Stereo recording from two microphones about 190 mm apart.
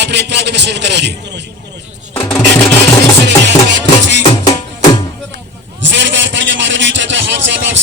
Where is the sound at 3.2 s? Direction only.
70° right (ahead or behind).